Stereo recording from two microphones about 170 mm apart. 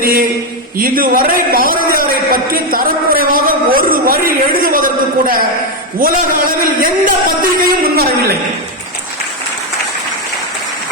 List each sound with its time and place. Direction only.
0.0 s a man's voice: 60° right (ahead or behind)